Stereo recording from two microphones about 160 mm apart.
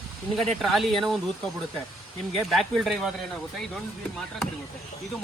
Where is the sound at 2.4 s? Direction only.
Centre (ahead or behind).